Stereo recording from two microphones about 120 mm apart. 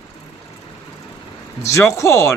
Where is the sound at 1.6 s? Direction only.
25° left (ahead or behind).